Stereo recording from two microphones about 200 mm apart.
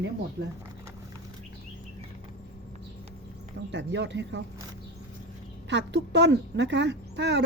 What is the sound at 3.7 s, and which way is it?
Speech, 60° right (ahead or behind).